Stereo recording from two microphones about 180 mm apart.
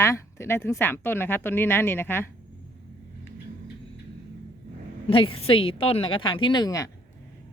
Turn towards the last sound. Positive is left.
turn(degrees=20)  # may be behind; listen again after turning